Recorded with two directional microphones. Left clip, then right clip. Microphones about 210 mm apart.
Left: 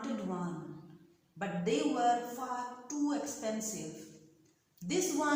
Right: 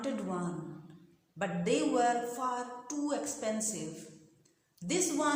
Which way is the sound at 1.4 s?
50° right (ahead or behind).